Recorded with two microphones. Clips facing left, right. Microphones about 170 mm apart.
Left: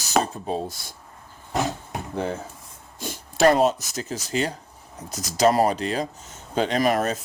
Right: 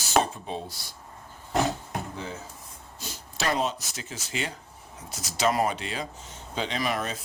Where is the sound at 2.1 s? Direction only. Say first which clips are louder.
Left 9 dB; 60° left (ahead or behind).